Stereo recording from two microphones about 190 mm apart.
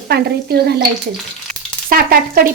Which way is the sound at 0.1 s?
60° right (ahead or behind).